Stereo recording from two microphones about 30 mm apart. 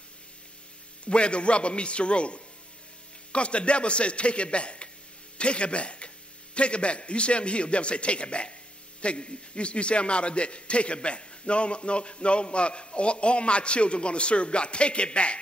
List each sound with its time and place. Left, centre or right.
1.0 s a man's voice: left